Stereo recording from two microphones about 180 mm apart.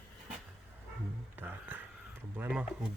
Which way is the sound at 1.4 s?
10° right (ahead or behind).